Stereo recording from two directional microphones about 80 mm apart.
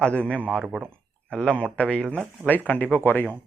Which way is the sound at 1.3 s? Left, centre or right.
Centre.